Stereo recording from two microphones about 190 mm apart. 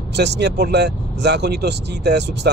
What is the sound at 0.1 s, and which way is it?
Speech, 60° right (ahead or behind).